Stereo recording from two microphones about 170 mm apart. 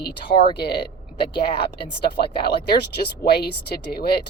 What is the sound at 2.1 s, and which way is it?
A woman's voice, 65° left (ahead or behind).